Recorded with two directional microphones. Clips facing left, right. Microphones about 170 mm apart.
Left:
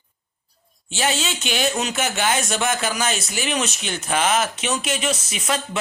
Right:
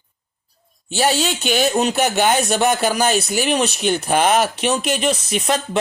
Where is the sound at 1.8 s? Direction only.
35° right (ahead or behind).